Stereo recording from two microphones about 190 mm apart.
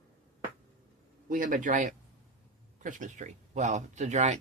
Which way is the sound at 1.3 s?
45° right (ahead or behind).